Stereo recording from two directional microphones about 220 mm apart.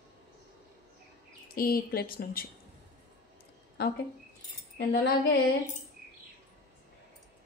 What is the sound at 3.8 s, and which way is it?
Speech, 45° left (ahead or behind).